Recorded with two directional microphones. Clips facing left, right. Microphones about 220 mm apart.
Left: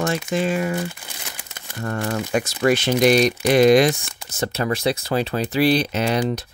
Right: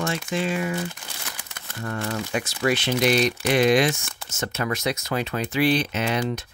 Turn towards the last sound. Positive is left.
turn(degrees=35)  # may be behind; listen again after turning